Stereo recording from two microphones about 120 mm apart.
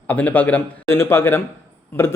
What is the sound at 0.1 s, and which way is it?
A man's voice, 15° left (ahead or behind).